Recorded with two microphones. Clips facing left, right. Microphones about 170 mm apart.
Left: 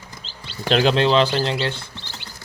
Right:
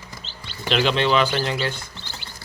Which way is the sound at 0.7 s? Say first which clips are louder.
Left 3 dB; 40° left (ahead or behind).